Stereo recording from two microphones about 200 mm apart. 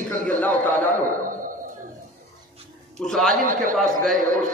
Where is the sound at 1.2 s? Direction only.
45° right (ahead or behind).